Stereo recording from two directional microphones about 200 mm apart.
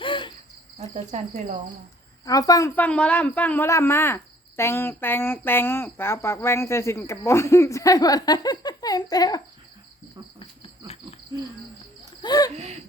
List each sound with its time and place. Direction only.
0.0 s cricket: 25° left (ahead or behind)
0.8 s cricket: 35° right (ahead or behind)
2.2 s speech: 15° left (ahead or behind)
10.4 s insect: 25° left (ahead or behind)
12.2 s speech: 20° left (ahead or behind)